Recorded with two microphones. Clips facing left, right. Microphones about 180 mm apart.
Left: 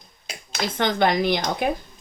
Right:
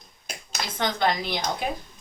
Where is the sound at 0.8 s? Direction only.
60° left (ahead or behind).